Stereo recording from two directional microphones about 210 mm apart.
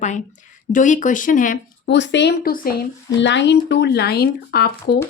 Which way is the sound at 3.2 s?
55° left (ahead or behind).